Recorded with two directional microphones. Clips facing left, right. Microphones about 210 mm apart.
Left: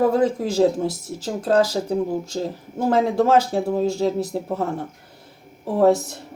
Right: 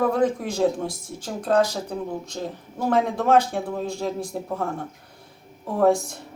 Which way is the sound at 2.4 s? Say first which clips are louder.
Left 4 dB; 30° left (ahead or behind).